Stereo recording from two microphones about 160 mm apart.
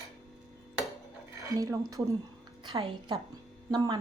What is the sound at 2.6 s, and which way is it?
Speech, 35° right (ahead or behind).